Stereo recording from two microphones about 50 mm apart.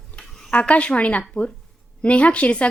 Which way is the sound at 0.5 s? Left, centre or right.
Left.